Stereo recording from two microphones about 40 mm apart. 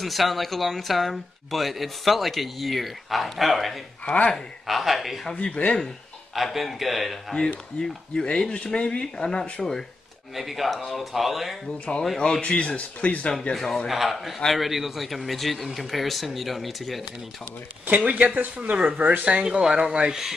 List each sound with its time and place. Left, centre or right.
0.0 s speech: centre
4.0 s speech: left
4.6 s speech: centre
5.3 s speech: left
6.3 s speech: centre
7.3 s speech: centre
10.3 s speech: centre
11.9 s speech: left
13.5 s speech: centre
17.8 s speech: right
19.4 s speech: centre
19.8 s speech: right
20.1 s speech: centre